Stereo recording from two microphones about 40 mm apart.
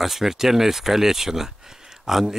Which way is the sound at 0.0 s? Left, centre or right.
Centre.